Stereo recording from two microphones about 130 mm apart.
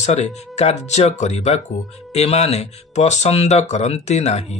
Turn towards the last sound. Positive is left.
turn(degrees=60)  # may be behind; listen again after turning